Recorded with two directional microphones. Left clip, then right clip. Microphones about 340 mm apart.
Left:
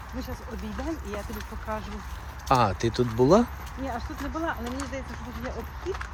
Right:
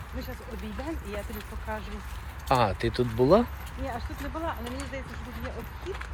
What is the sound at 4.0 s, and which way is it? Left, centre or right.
Speech, left.